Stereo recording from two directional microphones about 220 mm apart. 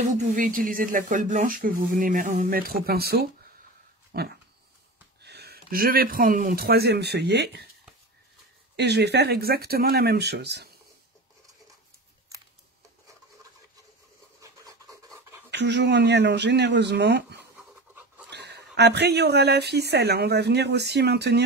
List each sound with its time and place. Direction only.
0.2 s speech: 35° right (ahead or behind)
4.1 s dog: 45° right (ahead or behind)
5.2 s speech: 45° right (ahead or behind)
8.7 s speech: 50° right (ahead or behind)
14.4 s a sound: 15° right (ahead or behind)
15.5 s speech: 50° right (ahead or behind)